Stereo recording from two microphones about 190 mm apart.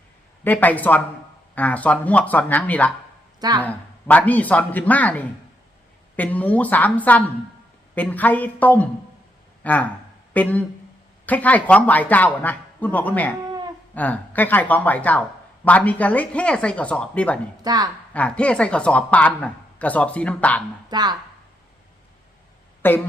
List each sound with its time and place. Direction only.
0.4 s speech: 10° left (ahead or behind)
17.6 s a woman's voice: 20° right (ahead or behind)
18.1 s speech: 5° left (ahead or behind)
20.9 s speech: 20° right (ahead or behind)
22.8 s speech: 10° left (ahead or behind)